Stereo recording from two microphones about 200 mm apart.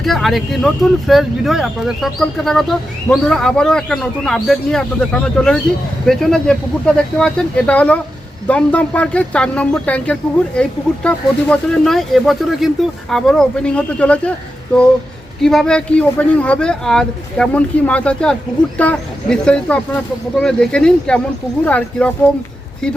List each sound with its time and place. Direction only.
0.0 s speech: centre (ahead or behind)